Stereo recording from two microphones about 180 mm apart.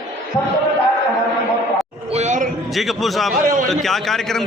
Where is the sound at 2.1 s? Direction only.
40° right (ahead or behind).